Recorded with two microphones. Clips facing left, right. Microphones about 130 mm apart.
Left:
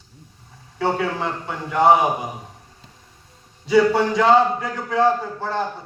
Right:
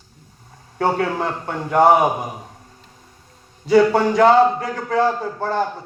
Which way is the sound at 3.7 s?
50° right (ahead or behind).